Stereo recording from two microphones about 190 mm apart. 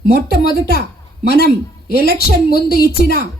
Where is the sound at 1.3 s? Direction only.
55° right (ahead or behind).